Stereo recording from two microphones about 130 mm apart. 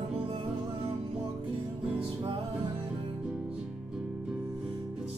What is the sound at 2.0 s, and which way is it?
Music, 45° right (ahead or behind).